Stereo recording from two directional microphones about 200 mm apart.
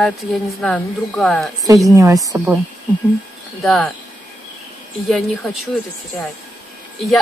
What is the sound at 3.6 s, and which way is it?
Speech, 5° left (ahead or behind).